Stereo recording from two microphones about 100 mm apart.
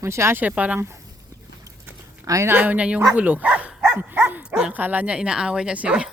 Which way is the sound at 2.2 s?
35° right (ahead or behind).